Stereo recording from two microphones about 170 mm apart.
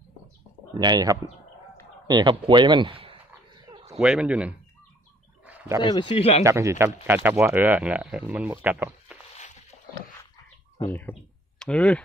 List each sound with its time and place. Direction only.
0.7 s speech: 25° right (ahead or behind)
3.6 s a sound: 25° right (ahead or behind)
4.0 s speech: 5° right (ahead or behind)
5.5 s wild animals: 10° right (ahead or behind)
5.8 s speech: 25° left (ahead or behind)
6.4 s speech: 15° right (ahead or behind)
10.9 s speech: 10° left (ahead or behind)